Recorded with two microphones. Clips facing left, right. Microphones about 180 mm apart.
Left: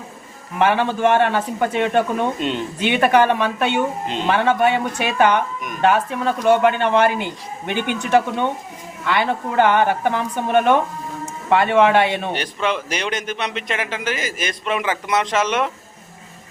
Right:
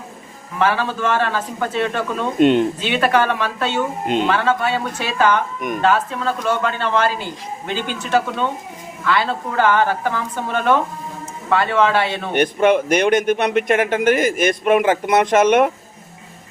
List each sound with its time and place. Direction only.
0.6 s a man's voice: 20° left (ahead or behind)
2.4 s speech: 55° right (ahead or behind)
2.7 s a man's voice: 15° left (ahead or behind)
12.3 s a man's voice: 55° right (ahead or behind)